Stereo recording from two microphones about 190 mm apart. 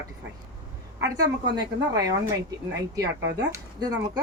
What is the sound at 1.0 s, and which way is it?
Speech, 20° right (ahead or behind).